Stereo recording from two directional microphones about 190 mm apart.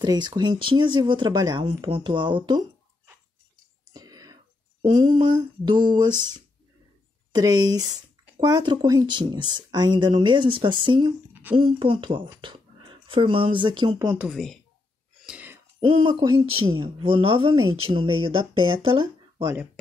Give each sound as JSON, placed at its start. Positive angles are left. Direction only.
{"t": 0.0, "sound": "speech", "side_deg": -20}
{"t": 3.9, "sound": "whispering", "side_deg": -20}
{"t": 4.9, "sound": "speech", "side_deg": -25}
{"t": 14.1, "sound": "a woman's voice", "side_deg": -5}
{"t": 15.2, "sound": "a sound", "side_deg": -10}
{"t": 15.8, "sound": "speech", "side_deg": -25}
{"t": 19.4, "sound": "speech", "side_deg": -10}